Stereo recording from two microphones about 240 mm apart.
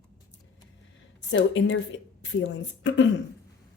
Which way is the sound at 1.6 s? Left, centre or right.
Left.